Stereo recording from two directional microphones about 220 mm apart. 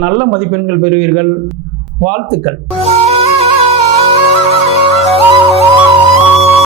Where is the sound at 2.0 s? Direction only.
25° right (ahead or behind).